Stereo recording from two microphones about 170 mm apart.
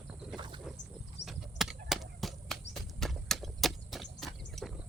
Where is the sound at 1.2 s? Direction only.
Centre (ahead or behind).